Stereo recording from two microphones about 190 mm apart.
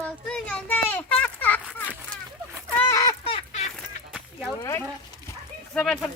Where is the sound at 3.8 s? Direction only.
Centre (ahead or behind).